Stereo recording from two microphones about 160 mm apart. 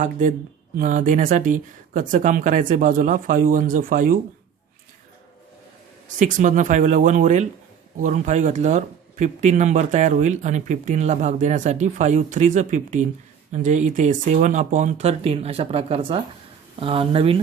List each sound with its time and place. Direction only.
0.0 s speech: 50° right (ahead or behind)
6.1 s speech: 50° right (ahead or behind); by 17.4 s 35° right (ahead or behind)